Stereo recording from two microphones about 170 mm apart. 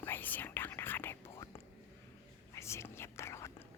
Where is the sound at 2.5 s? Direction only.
15° left (ahead or behind).